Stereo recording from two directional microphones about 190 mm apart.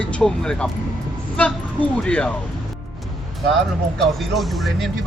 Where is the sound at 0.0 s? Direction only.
5° left (ahead or behind).